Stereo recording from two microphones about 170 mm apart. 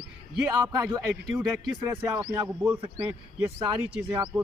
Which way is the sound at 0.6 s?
20° right (ahead or behind).